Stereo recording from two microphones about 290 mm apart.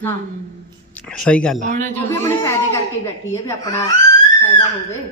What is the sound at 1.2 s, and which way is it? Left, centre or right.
Speech, centre.